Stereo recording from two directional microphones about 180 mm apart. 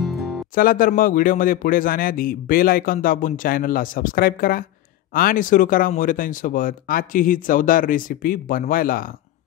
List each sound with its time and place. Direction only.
0.6 s a man's voice: 50° left (ahead or behind)